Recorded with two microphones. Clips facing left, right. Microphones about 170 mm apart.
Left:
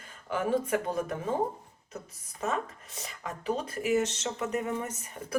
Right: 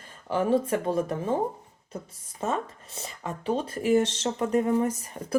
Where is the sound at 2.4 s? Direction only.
30° right (ahead or behind).